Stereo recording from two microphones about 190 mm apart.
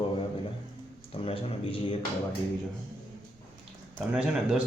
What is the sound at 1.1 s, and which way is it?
Speech, 30° left (ahead or behind).